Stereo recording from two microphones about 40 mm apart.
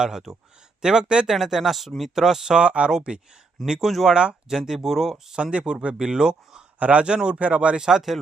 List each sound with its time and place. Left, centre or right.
0.0 s speech: centre
1.3 s speech: centre
2.6 s speech: right
3.8 s speech: centre
4.1 s speech: right
4.4 s speech: centre
5.3 s speech: right
6.7 s a man's voice: right
7.0 s speech: right
7.3 s speech: right
7.8 s speech: centre